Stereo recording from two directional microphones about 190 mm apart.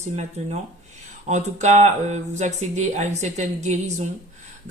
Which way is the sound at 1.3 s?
35° right (ahead or behind).